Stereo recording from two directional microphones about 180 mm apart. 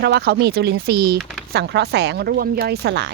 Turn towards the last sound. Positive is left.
turn(degrees=-70)  # may be behind; listen again after turning